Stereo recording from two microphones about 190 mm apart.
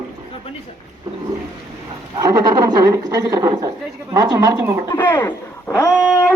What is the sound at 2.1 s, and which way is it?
Speech, 20° right (ahead or behind).